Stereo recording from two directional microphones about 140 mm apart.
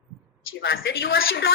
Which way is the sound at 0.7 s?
90° left.